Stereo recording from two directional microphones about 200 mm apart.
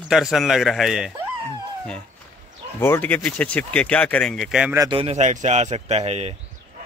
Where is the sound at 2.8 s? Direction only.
10° left (ahead or behind).